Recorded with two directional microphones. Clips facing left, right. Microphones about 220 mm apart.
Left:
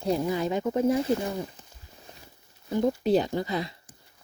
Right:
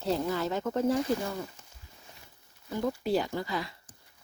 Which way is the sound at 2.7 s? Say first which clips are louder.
Left 6 dB; 20° left (ahead or behind).